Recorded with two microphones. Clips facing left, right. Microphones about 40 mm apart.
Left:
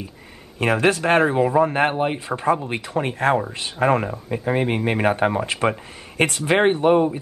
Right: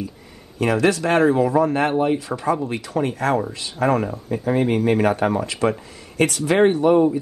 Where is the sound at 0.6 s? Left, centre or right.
Left.